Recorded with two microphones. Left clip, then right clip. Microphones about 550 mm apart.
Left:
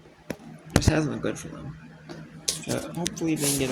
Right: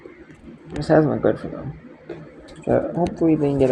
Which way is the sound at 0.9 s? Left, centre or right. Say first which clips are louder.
Right 11 dB; left.